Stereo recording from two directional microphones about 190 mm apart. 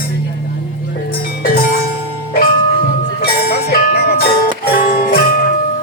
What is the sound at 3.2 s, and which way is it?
Music, 55° left (ahead or behind).